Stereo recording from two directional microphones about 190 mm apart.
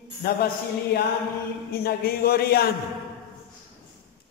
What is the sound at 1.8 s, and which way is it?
Speech, 50° left (ahead or behind).